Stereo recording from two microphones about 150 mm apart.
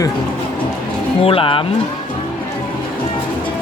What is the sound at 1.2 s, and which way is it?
Speech, 40° left (ahead or behind).